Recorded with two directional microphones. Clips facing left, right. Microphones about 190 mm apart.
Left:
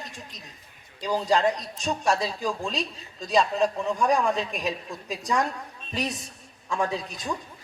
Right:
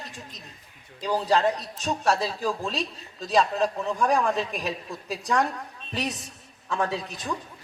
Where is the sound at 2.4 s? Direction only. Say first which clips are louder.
Right 1 dB; centre (ahead or behind).